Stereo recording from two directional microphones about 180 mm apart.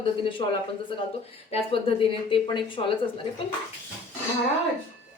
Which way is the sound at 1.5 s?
30° left (ahead or behind).